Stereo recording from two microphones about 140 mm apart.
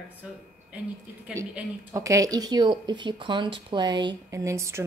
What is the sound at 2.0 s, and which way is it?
Speech, 20° right (ahead or behind).